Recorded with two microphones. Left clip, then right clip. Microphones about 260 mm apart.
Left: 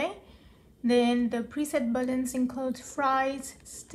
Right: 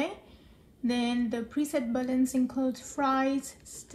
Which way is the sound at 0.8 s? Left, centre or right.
Left.